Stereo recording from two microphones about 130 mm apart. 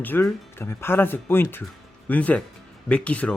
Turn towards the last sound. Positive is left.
turn(degrees=10)  # may be behind; listen again after turning